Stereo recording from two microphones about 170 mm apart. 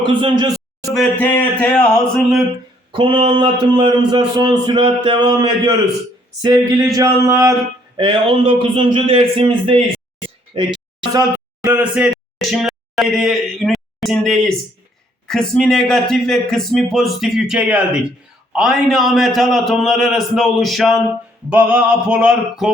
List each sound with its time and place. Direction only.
0.0 s a man's voice: 30° right (ahead or behind)
0.9 s a man's voice: 5° left (ahead or behind)
2.9 s a man's voice: 30° right (ahead or behind)
7.9 s a man's voice: 30° right (ahead or behind)
11.1 s a man's voice: 15° right (ahead or behind)